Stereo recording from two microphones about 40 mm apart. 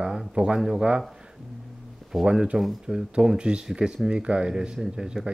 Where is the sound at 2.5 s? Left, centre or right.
Centre.